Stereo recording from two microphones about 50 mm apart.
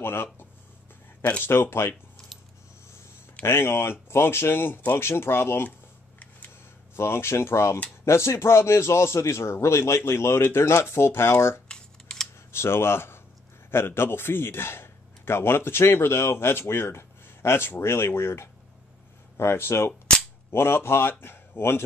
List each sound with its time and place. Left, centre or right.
0.0 s speech: left
3.4 s speech: left
7.0 s a man's voice: left
11.7 s camera: centre
12.5 s a man's voice: left
19.9 s cap gun: centre
20.5 s a man's voice: left